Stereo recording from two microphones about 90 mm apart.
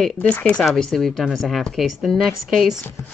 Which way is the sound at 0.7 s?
5° left (ahead or behind).